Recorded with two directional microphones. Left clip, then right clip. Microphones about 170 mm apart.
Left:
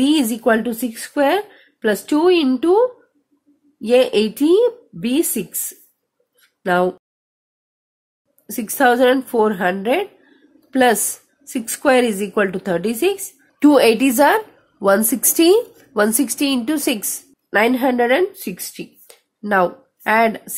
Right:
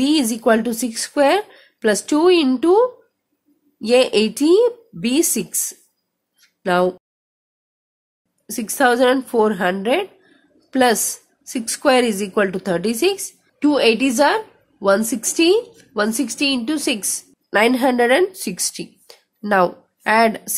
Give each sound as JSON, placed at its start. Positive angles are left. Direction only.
{"t": 0.0, "sound": "a woman's voice", "side_deg": 10}
{"t": 6.6, "sound": "a woman's voice", "side_deg": 5}
{"t": 8.5, "sound": "a woman's voice", "side_deg": 10}
{"t": 13.6, "sound": "a woman's voice", "side_deg": 20}
{"t": 15.0, "sound": "a woman's voice", "side_deg": 0}
{"t": 15.3, "sound": "a woman's voice", "side_deg": 15}